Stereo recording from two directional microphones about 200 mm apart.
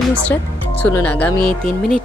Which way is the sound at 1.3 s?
25° right (ahead or behind).